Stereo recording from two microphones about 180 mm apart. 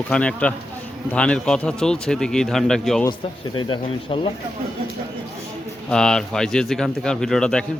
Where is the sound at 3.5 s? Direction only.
25° left (ahead or behind).